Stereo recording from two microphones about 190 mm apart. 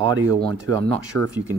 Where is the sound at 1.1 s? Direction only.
10° left (ahead or behind).